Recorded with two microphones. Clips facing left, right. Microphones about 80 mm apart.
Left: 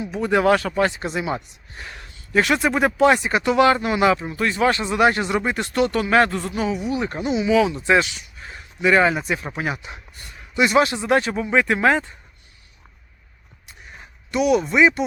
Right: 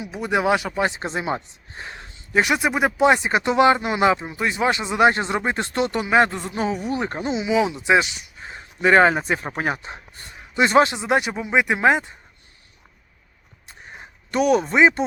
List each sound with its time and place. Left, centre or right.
0.0 s speech: centre
8.8 s speech: right
10.9 s speech: centre
13.7 s a sound: right
14.3 s speech: right